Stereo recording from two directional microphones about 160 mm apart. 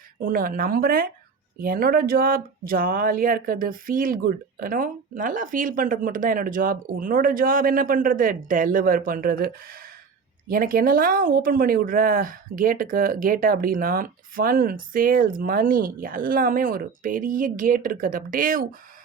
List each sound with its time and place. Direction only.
0.2 s speech: 60° right (ahead or behind)